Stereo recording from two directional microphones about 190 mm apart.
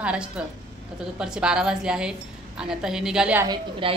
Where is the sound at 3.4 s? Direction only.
25° right (ahead or behind).